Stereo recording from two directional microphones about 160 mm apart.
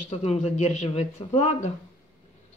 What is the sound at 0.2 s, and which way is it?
A woman's voice, 40° left (ahead or behind).